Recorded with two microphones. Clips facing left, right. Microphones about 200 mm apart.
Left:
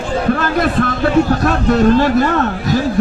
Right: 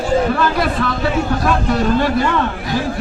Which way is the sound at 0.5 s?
50° left (ahead or behind).